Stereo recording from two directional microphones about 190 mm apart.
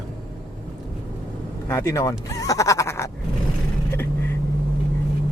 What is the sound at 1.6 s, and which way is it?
Speech, 15° left (ahead or behind).